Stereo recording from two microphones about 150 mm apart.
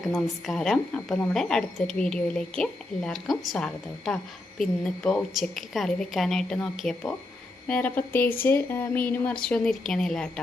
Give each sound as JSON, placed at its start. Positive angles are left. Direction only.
{"t": 0.1, "sound": "a woman's voice", "side_deg": 0}